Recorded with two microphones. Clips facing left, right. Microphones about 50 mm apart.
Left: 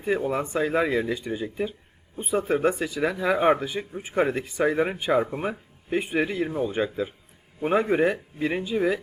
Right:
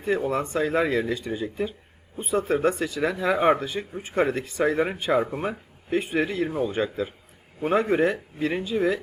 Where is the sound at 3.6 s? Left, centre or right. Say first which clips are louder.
Even; centre.